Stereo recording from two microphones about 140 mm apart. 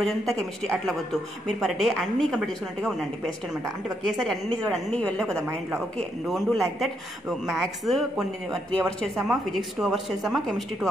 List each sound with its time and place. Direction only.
0.0 s speech: centre (ahead or behind)
4.3 s speech: 5° left (ahead or behind)